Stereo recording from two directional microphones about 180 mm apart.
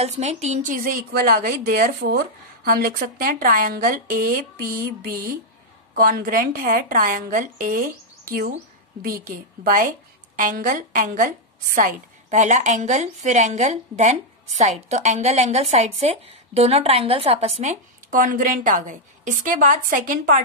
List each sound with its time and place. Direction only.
0.0 s a woman's voice: 40° right (ahead or behind)